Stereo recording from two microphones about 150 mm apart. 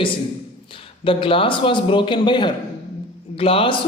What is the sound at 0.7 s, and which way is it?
A man's voice, 35° left (ahead or behind).